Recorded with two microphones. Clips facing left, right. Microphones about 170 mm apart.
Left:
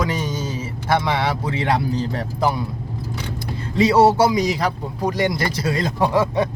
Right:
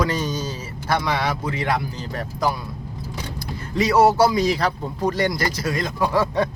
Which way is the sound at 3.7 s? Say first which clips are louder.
Left 2 dB; 30° left (ahead or behind).